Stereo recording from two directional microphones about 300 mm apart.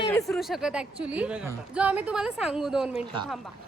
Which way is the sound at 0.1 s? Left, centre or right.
Centre.